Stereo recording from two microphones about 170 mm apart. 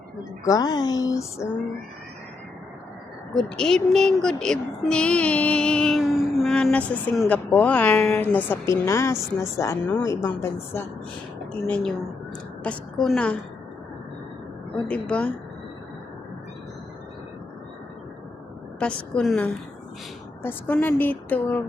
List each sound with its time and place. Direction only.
0.4 s speech: 20° left (ahead or behind)
3.3 s speech: 5° left (ahead or behind)
12.7 s a woman's voice: 10° left (ahead or behind)
14.8 s speech: 5° left (ahead or behind)
18.8 s a woman's voice: 5° left (ahead or behind)